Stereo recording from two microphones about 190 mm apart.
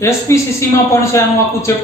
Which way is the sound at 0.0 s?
15° left (ahead or behind).